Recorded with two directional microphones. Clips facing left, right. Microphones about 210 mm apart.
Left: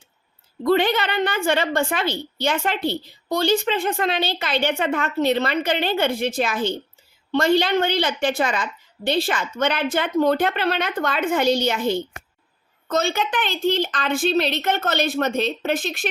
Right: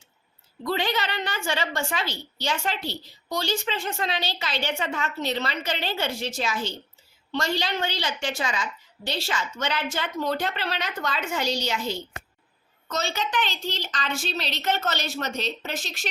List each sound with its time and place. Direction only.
0.6 s a woman's voice: 55° left (ahead or behind)